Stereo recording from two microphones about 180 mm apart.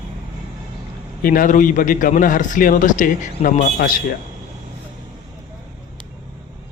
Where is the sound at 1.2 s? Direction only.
50° left (ahead or behind).